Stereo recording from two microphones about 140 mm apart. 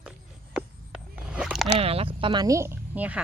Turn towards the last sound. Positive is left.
turn(degrees=-10)  # may be behind; listen again after turning